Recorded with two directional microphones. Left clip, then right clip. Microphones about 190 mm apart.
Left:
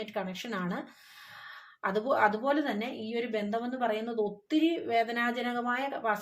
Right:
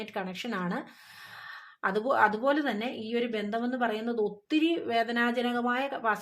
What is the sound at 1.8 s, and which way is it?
Speech, 20° right (ahead or behind).